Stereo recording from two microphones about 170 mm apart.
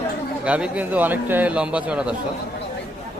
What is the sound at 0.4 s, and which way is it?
A man's voice, 10° right (ahead or behind).